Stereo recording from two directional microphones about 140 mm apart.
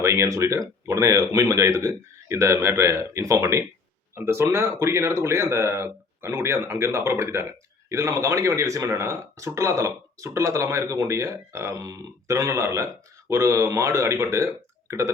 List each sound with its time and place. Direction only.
0.0 s speech: 20° right (ahead or behind)